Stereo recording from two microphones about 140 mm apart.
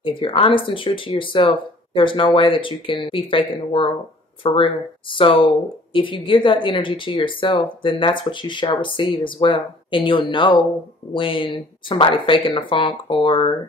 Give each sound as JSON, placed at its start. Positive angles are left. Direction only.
{"t": 0.0, "sound": "a woman's voice", "side_deg": 35}